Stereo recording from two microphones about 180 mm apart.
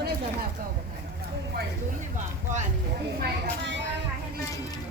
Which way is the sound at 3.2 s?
70° right (ahead or behind).